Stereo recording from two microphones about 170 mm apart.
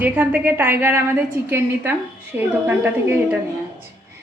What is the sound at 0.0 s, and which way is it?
A woman's voice, 10° right (ahead or behind).